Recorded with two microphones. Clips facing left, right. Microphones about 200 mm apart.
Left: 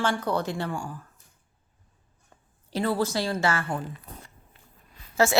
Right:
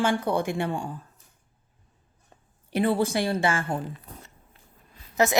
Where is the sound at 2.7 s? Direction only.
20° right (ahead or behind).